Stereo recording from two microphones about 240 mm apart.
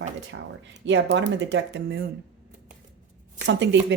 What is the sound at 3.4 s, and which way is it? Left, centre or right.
Speech, right.